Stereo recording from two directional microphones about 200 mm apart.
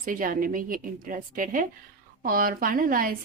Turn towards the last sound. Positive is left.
turn(degrees=-45)  # may be behind; listen again after turning